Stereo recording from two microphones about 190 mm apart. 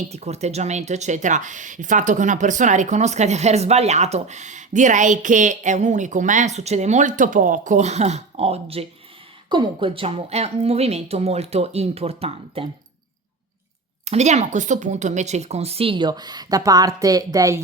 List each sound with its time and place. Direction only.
0.1 s speech: 35° right (ahead or behind)
14.0 s speech: 35° right (ahead or behind); by 17.6 s 20° right (ahead or behind)